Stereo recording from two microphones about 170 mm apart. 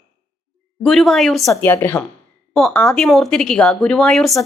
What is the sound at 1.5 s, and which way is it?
A woman's voice, 15° left (ahead or behind).